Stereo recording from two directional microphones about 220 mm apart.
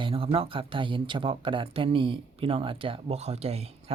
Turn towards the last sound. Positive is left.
turn(degrees=-30)  # may be behind; listen again after turning